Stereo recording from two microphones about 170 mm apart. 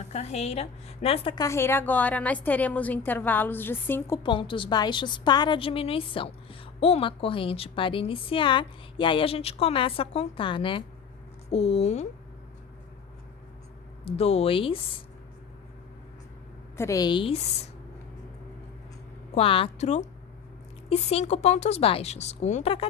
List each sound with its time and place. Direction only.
0.1 s a woman's voice: 40° left (ahead or behind)
1.4 s a woman's voice: 15° left (ahead or behind)
4.2 s a woman's voice: 30° left (ahead or behind)
14.0 s a woman's voice: 35° left (ahead or behind)
16.7 s a woman's voice: 15° left (ahead or behind); by 17.7 s 40° left (ahead or behind)
19.3 s a woman's voice: 35° left (ahead or behind)